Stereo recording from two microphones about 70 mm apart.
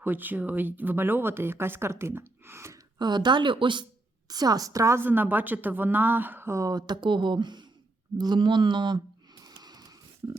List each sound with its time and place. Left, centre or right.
0.0 s speech: right
3.0 s speech: right
4.3 s a woman's voice: right
4.9 s a woman's voice: right
6.5 s speech: right
6.7 s speech: right
8.2 s a sound: right